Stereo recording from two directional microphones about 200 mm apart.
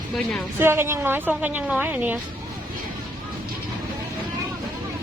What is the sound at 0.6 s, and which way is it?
A woman's voice, 10° right (ahead or behind).